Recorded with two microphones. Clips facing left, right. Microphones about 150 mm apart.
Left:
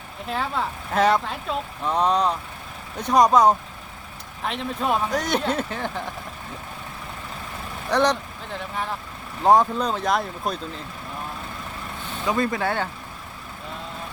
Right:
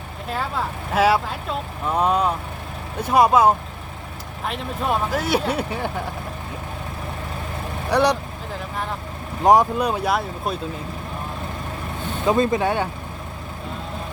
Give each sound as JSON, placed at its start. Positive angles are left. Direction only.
{"t": 0.3, "sound": "speech", "side_deg": 0}
{"t": 7.9, "sound": "speech", "side_deg": -10}
{"t": 8.7, "sound": "speech", "side_deg": 0}
{"t": 9.4, "sound": "speech", "side_deg": -10}
{"t": 12.2, "sound": "speech", "side_deg": -25}